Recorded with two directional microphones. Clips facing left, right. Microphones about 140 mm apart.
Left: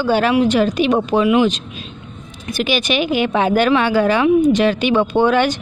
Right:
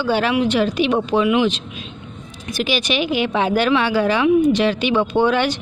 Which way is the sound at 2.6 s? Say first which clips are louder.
Left 2 dB; 55° left (ahead or behind).